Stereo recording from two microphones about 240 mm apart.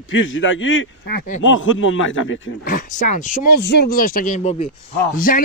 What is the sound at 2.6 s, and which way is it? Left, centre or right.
Speech, left.